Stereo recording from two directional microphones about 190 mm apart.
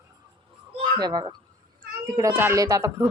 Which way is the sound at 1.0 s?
20° right (ahead or behind).